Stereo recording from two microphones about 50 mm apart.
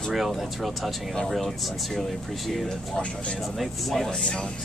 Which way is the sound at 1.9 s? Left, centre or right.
Centre.